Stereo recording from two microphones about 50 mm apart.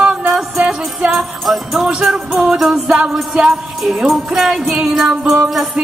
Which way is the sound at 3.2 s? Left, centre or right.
Centre.